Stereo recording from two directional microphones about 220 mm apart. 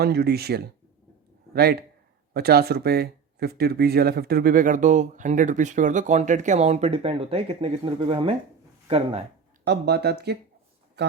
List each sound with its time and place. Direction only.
0.0 s speech: 45° right (ahead or behind); by 8.4 s 25° right (ahead or behind)
9.6 s speech: 50° right (ahead or behind)